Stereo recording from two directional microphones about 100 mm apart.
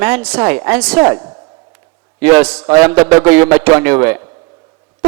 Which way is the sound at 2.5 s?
30° right (ahead or behind).